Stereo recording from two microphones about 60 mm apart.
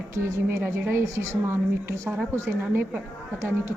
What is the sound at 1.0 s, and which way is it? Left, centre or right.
A woman's voice, right.